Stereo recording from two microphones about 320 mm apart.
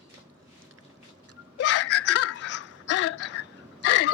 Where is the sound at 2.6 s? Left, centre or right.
Left.